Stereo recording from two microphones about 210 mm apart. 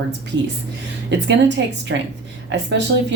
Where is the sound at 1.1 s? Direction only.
55° right (ahead or behind).